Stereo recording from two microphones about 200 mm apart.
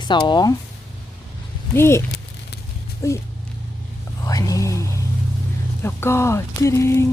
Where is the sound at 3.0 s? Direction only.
15° left (ahead or behind).